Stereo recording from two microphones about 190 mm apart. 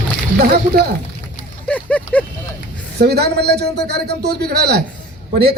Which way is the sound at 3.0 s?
60° right (ahead or behind).